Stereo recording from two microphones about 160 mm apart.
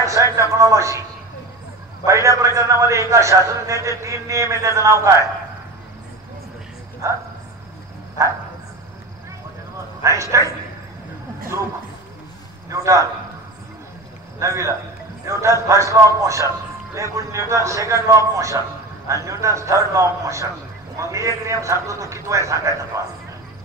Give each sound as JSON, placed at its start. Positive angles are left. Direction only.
{"t": 0.0, "sound": "a man's voice", "side_deg": -20}
{"t": 2.0, "sound": "a man's voice", "side_deg": -20}
{"t": 7.0, "sound": "a man's voice", "side_deg": -20}
{"t": 10.0, "sound": "a man's voice", "side_deg": -20}
{"t": 11.5, "sound": "a man's voice", "side_deg": -20}
{"t": 14.4, "sound": "a man's voice", "side_deg": -20}